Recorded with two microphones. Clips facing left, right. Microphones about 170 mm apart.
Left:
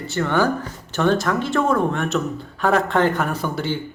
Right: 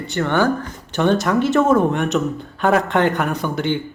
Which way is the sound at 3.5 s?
20° right (ahead or behind).